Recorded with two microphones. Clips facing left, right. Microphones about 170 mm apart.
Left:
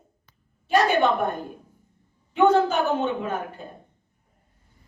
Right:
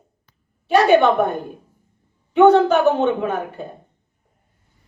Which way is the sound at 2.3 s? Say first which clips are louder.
Right 7 dB; 70° right (ahead or behind).